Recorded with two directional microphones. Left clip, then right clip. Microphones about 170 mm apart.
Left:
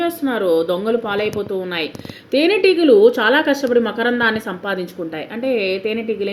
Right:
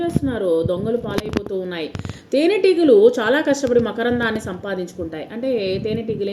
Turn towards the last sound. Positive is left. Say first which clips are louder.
# left 2 dB
turn(degrees=5)  # may be behind; listen again after turning